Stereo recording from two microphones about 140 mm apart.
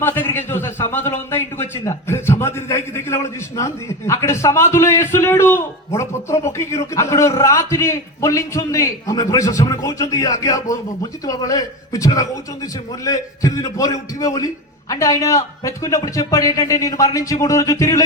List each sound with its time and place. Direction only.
0.0 s a man's voice: 15° left (ahead or behind)